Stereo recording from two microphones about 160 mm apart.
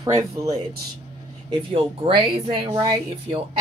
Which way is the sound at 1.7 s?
35° right (ahead or behind).